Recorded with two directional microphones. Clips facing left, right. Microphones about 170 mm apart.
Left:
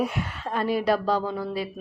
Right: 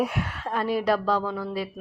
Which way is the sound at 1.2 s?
25° left (ahead or behind).